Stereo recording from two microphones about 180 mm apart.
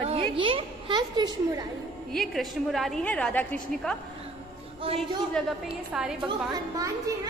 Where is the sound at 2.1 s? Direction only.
Centre (ahead or behind).